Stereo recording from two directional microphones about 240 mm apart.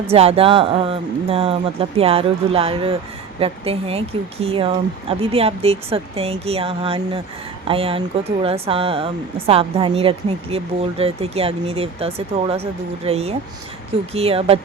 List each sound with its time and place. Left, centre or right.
0.1 s speech: right